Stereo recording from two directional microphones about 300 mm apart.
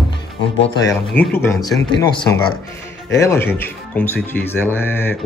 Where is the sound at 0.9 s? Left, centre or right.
Centre.